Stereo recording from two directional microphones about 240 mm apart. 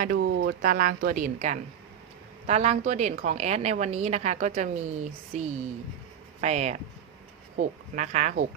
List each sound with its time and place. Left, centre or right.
0.0 s a woman's voice: right